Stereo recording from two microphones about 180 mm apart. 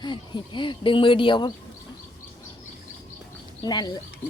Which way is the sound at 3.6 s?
20° left (ahead or behind).